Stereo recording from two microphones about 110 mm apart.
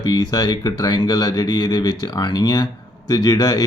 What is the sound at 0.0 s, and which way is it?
Speech, 40° left (ahead or behind).